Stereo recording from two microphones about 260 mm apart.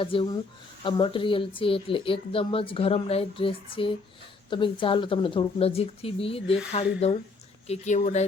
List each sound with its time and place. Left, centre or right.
0.0 s speech: centre